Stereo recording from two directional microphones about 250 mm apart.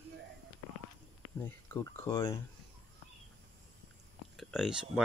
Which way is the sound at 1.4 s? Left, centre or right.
Centre.